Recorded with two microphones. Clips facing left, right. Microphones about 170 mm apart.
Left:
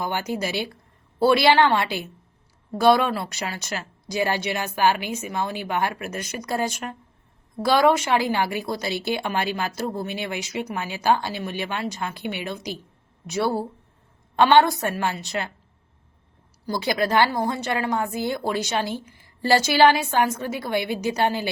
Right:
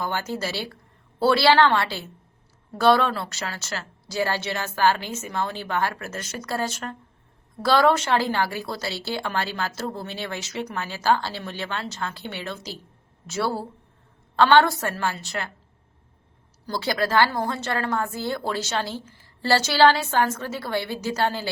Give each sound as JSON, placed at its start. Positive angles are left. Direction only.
{"t": 0.0, "sound": "a woman's voice", "side_deg": 15}
{"t": 16.6, "sound": "a woman's voice", "side_deg": 15}